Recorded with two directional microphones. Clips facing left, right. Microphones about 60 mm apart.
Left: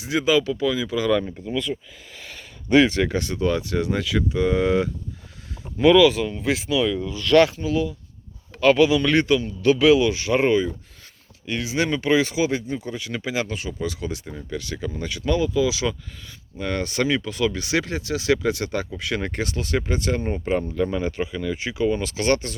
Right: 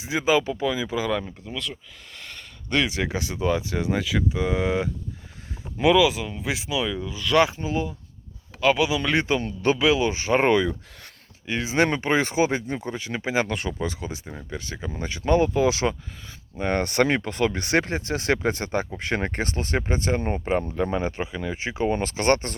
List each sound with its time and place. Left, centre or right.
0.0 s speech: right
1.1 s speech: centre
2.8 s speech: centre
7.5 s speech: right
8.6 s speech: centre
9.0 s speech: centre
10.5 s speech: right
11.4 s speech: right
13.0 s speech: right
13.5 s speech: right
13.8 s speech: right
16.8 s speech: right